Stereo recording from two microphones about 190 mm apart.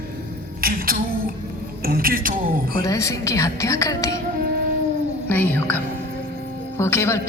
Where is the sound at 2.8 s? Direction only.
15° left (ahead or behind).